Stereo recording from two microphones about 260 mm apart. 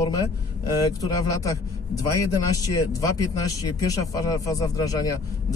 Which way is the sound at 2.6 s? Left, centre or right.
Centre.